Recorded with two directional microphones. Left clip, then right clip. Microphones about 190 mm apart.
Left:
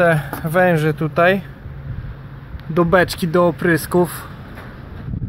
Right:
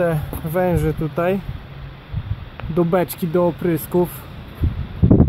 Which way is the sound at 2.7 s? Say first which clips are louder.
Left 4 dB; 10° right (ahead or behind).